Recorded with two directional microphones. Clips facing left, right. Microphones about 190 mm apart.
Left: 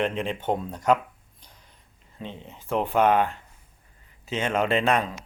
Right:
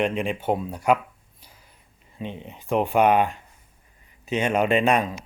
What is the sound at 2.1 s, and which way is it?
Speech, 15° right (ahead or behind).